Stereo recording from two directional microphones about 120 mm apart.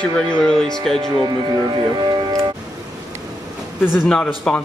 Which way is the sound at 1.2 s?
35° right (ahead or behind).